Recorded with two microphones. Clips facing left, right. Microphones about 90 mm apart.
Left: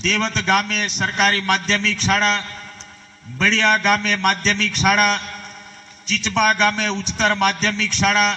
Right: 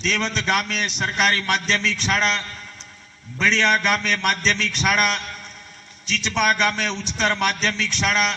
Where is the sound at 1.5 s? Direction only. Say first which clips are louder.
Left 3 dB; 35° left (ahead or behind).